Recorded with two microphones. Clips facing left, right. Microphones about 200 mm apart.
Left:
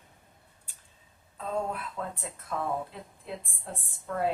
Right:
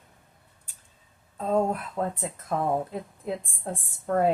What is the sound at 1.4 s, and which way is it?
A woman's voice, 40° right (ahead or behind).